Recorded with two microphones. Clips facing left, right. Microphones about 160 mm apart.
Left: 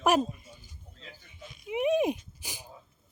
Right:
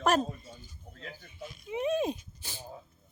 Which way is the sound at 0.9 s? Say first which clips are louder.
Right 5 dB; 60° right (ahead or behind).